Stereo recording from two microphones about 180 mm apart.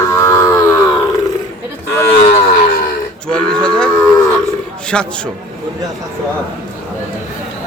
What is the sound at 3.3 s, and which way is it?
Speech, 5° left (ahead or behind).